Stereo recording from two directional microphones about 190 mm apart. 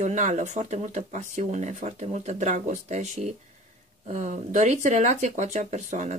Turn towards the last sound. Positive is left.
turn(degrees=-40)  # may be behind; listen again after turning